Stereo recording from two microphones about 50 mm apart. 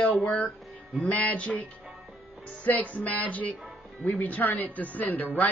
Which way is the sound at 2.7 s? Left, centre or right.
Left.